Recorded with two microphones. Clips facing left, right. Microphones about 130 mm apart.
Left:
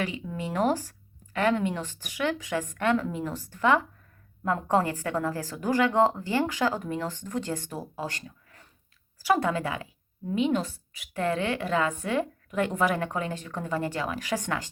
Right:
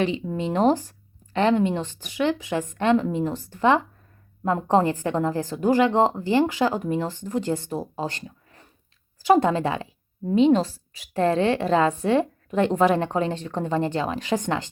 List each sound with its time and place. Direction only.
0.3 s a woman's voice: 25° right (ahead or behind)
9.2 s a woman's voice: 25° right (ahead or behind)